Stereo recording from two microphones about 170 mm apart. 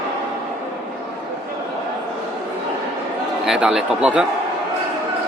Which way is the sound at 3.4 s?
5° right (ahead or behind).